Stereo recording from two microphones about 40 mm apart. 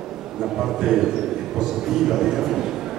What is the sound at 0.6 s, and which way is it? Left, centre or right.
A man's voice, centre.